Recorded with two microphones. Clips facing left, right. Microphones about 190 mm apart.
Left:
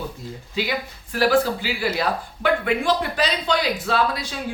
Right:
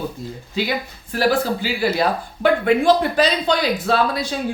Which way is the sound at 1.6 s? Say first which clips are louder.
Right 4 dB; 40° right (ahead or behind).